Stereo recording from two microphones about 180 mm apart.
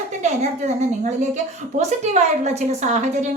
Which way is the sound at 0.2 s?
40° right (ahead or behind).